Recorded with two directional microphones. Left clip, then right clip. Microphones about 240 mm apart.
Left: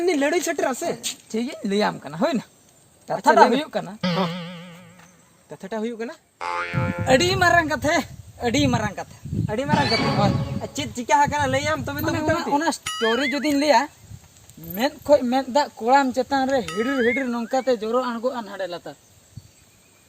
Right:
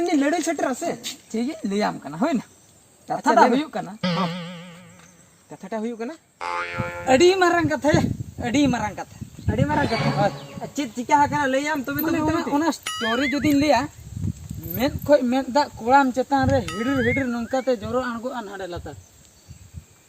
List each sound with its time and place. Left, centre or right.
0.0 s speech: left
4.0 s music: centre
5.6 s speech: left
6.4 s boing: centre
7.0 s speech: left
10.8 s speech: left
12.8 s boing: centre
13.4 s speech: left
16.6 s boing: centre
17.1 s speech: left